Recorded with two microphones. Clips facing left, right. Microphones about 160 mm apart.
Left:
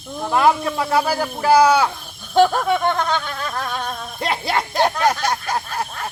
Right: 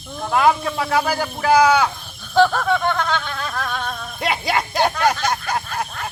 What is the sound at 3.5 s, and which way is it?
Music, 15° left (ahead or behind).